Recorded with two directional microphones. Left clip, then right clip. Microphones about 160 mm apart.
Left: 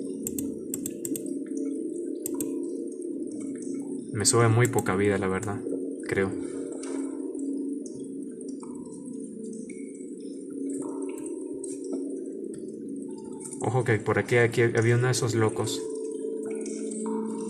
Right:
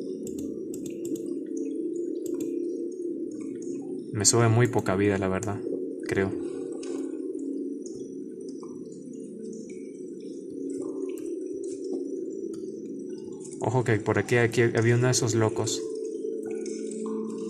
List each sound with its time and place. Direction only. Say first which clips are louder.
4.2 s speech: even; 40° right (ahead or behind)
13.6 s speech: even; 40° right (ahead or behind)